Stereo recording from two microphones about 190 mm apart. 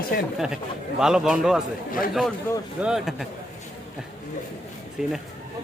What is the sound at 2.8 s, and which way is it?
Speech, centre (ahead or behind).